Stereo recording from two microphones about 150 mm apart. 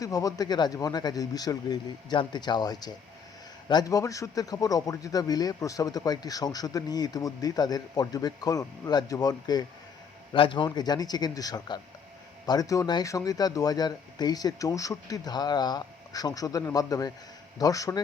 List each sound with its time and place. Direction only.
0.0 s a man's voice: 25° left (ahead or behind)